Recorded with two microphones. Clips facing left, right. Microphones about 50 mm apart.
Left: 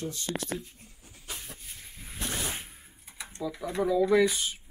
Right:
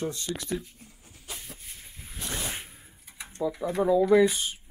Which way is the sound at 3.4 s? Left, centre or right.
Right.